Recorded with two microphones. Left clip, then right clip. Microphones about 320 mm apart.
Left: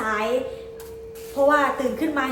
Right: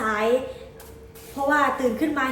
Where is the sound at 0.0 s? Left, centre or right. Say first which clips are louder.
Right 2 dB; centre.